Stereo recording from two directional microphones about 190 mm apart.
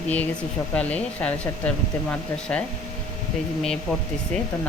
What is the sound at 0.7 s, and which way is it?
Speech, 5° left (ahead or behind).